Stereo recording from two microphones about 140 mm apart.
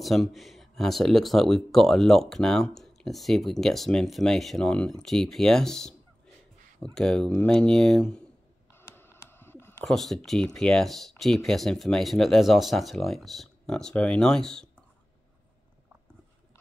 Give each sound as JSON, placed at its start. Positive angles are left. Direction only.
{"t": 0.0, "sound": "speech", "side_deg": 0}
{"t": 8.7, "sound": "a sound", "side_deg": 15}
{"t": 9.8, "sound": "speech", "side_deg": 0}